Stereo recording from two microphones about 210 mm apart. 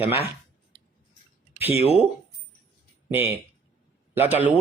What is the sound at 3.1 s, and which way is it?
A man's voice, 10° right (ahead or behind).